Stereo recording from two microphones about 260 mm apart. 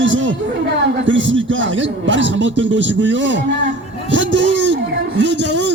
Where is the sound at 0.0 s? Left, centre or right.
Right.